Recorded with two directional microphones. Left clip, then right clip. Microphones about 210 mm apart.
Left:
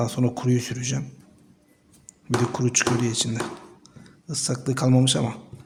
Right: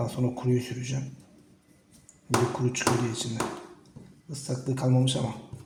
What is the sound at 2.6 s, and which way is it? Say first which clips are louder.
Speech: left 4 dB; 40° left (ahead or behind).